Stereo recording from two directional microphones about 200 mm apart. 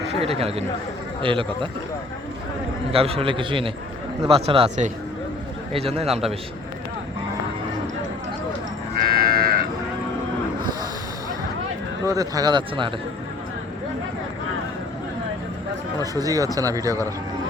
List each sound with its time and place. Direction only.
0.1 s speech: 30° right (ahead or behind)
2.9 s speech: 30° right (ahead or behind)
9.0 s livestock: 50° right (ahead or behind)
12.0 s speech: 15° right (ahead or behind)
16.1 s speech: 20° right (ahead or behind)